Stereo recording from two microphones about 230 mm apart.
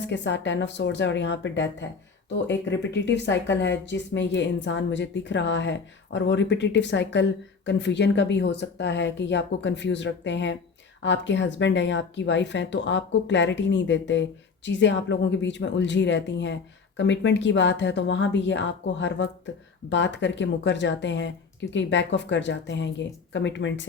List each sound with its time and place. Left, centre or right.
0.1 s speech: left